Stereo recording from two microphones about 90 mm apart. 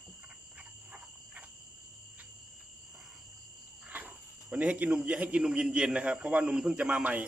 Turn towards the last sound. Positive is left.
turn(degrees=-15)  # may be behind; listen again after turning